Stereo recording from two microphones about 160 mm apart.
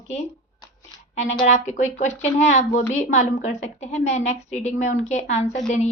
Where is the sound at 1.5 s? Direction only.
45° left (ahead or behind).